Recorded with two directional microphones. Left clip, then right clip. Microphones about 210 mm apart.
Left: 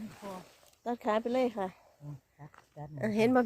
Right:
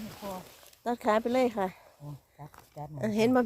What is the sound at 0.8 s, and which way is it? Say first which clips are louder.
Speech: right 4 dB; 20° right (ahead or behind).